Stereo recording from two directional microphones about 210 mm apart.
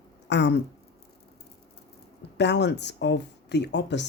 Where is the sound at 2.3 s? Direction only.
55° left (ahead or behind).